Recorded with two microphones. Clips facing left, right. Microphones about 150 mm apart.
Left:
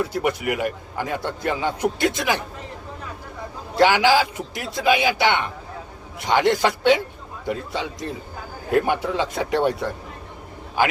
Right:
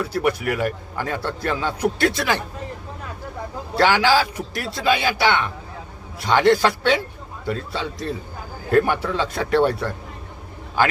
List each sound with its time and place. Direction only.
0.1 s a man's voice: 15° left (ahead or behind)
3.8 s a man's voice: 15° left (ahead or behind)